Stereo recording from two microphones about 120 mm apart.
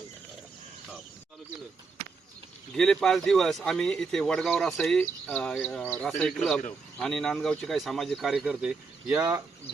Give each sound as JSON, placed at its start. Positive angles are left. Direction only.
{"t": 2.7, "sound": "speech", "side_deg": 5}
{"t": 9.0, "sound": "speech", "side_deg": -25}